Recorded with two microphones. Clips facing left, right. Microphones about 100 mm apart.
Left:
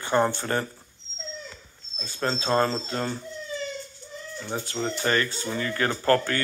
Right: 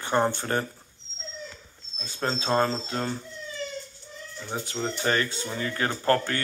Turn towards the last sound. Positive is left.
turn(degrees=-15)  # may be behind; listen again after turning